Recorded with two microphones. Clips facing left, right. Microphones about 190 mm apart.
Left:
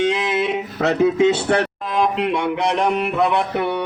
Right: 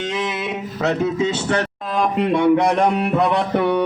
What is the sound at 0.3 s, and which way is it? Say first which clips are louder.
Speech: left 4 dB; 55° left (ahead or behind).